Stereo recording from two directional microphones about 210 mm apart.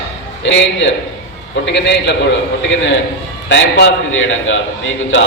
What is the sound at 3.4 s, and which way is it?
A man's voice, 60° left (ahead or behind).